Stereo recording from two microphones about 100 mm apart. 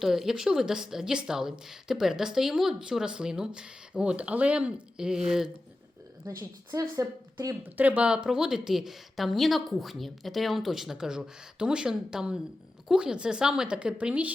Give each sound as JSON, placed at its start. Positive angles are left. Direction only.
{"t": 0.0, "sound": "speech", "side_deg": -5}
{"t": 6.2, "sound": "a woman's voice", "side_deg": -35}
{"t": 7.6, "sound": "speech", "side_deg": -15}